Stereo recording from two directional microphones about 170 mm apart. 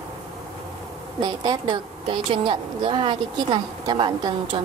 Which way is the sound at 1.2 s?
25° right (ahead or behind).